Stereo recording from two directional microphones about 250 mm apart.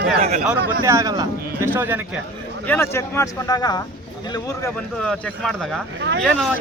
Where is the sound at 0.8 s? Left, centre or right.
Centre.